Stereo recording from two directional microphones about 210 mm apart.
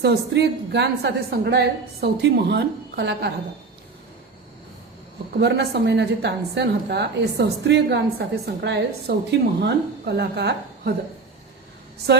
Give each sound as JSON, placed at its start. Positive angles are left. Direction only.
{"t": 0.0, "sound": "a woman's voice", "side_deg": -55}
{"t": 5.4, "sound": "a woman's voice", "side_deg": -50}